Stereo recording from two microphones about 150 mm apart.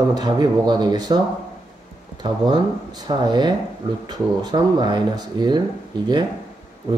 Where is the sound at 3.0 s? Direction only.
30° right (ahead or behind).